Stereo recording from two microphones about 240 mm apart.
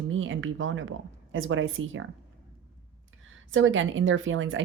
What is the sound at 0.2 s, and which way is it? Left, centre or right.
Speech, right.